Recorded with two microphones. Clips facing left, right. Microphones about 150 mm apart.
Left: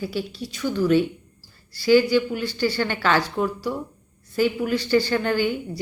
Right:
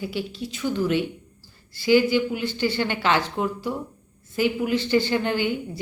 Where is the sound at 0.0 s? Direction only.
20° right (ahead or behind).